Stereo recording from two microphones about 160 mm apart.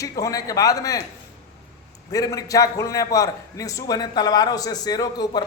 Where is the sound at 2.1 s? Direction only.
20° left (ahead or behind).